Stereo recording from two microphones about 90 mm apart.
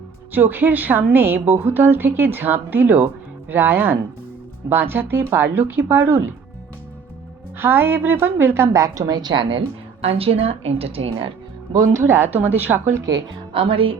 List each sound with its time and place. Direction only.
0.3 s a woman's voice: 20° right (ahead or behind)
7.6 s a woman's voice: 25° right (ahead or behind); by 9.6 s 70° right (ahead or behind)
10.2 s a woman's voice: 90° right
11.7 s a woman's voice: 35° right (ahead or behind)
13.5 s speech: 80° right